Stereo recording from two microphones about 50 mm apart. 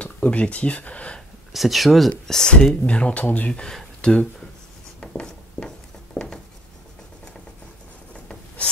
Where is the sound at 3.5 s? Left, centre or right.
Centre.